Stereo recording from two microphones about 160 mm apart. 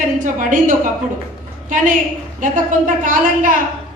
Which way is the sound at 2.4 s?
55° right (ahead or behind).